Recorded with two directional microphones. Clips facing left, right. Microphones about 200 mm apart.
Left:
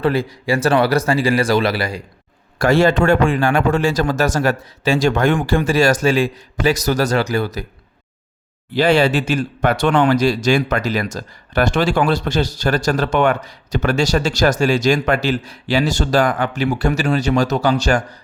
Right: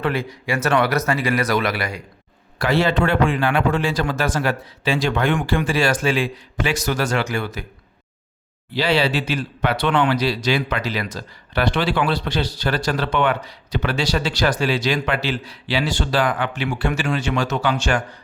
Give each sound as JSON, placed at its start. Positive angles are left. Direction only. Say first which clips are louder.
{"t": 0.0, "sound": "speech", "louder": "left 5 dB", "side_deg": 35}
{"t": 2.6, "sound": "speech", "louder": "left 5 dB", "side_deg": 45}
{"t": 8.7, "sound": "speech", "louder": "left 5 dB", "side_deg": 50}